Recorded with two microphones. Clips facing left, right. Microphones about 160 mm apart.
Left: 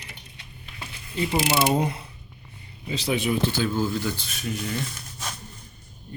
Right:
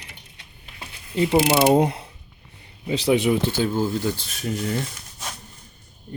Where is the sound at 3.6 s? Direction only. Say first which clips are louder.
Right 3 dB; 30° right (ahead or behind).